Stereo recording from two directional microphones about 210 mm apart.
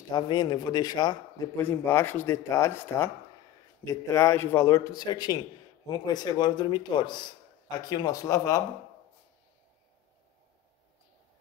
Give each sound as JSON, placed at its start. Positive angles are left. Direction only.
{"t": 0.1, "sound": "a man's voice", "side_deg": 20}